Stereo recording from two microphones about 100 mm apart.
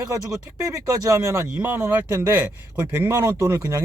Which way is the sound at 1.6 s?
20° right (ahead or behind).